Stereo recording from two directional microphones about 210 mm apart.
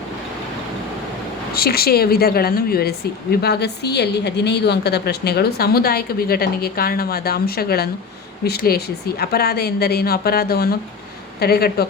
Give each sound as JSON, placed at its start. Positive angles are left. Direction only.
{"t": 1.5, "sound": "a woman's voice", "side_deg": 45}